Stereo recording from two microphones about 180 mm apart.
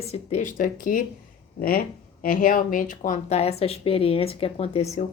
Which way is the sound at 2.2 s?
50° left (ahead or behind).